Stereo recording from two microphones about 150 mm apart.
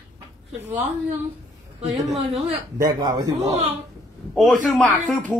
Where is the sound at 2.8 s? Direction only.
30° right (ahead or behind).